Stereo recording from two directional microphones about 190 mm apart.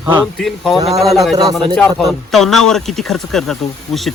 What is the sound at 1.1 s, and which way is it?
Speech, centre (ahead or behind).